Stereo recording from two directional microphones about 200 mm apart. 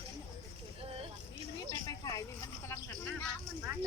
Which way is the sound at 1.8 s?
20° left (ahead or behind).